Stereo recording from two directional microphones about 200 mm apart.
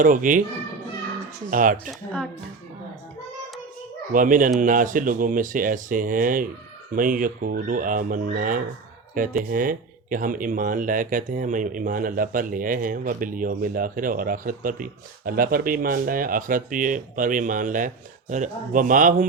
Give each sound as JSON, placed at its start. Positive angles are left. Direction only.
{"t": 0.0, "sound": "a child's voice", "side_deg": -40}
{"t": 1.5, "sound": "speech", "side_deg": -40}
{"t": 1.9, "sound": "speech", "side_deg": 0}
{"t": 4.1, "sound": "speech", "side_deg": -40}